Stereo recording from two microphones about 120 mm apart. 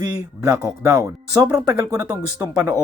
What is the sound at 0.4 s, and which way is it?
Speech, 25° right (ahead or behind).